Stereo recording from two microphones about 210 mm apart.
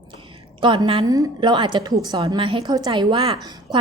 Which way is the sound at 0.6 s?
20° right (ahead or behind).